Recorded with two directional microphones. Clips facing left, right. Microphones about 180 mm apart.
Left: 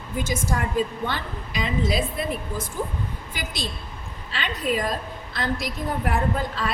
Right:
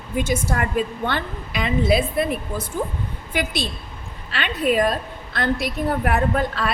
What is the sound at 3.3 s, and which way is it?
A woman's voice, 65° right (ahead or behind).